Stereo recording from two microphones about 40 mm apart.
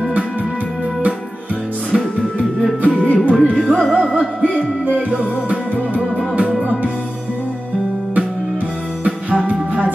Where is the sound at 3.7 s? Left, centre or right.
Left.